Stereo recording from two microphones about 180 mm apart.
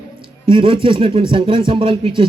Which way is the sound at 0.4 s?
30° right (ahead or behind).